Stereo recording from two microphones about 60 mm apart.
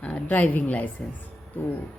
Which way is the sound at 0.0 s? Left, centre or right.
Left.